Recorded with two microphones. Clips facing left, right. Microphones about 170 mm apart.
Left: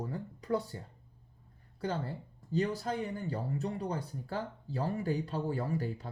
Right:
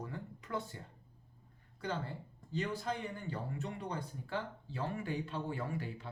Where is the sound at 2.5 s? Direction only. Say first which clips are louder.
Left 5 dB; 40° left (ahead or behind).